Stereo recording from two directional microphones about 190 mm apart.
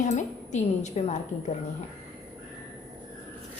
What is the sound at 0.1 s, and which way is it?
A woman's voice, 40° left (ahead or behind).